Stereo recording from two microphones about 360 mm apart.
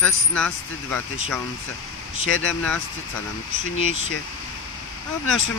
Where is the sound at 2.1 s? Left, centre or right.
Left.